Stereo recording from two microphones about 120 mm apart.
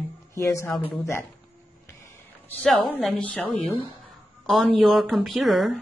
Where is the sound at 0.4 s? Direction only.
25° left (ahead or behind).